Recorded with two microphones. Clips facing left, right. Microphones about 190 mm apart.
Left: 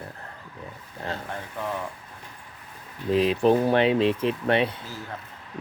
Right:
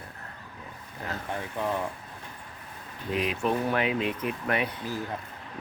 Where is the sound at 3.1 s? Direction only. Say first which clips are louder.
Left 8 dB; 30° left (ahead or behind).